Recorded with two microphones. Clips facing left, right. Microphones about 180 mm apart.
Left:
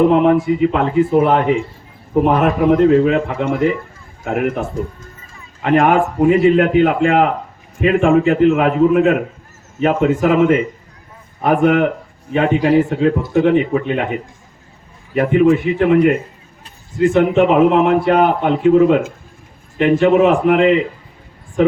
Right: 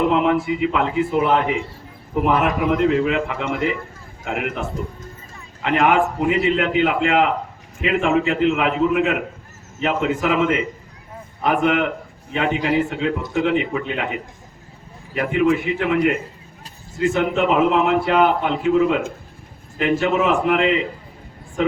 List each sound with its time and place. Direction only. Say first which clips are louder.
0.1 s a man's voice: left 6 dB; 40° left (ahead or behind)
5.6 s a man's voice: left 4 dB; 45° left (ahead or behind)
15.1 s a man's voice: left 6 dB; 40° left (ahead or behind)